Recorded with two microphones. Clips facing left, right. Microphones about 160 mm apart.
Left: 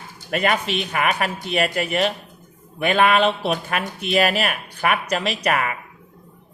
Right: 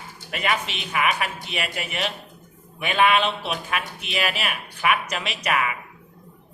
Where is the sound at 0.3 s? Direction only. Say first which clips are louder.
Left 5 dB; 45° left (ahead or behind).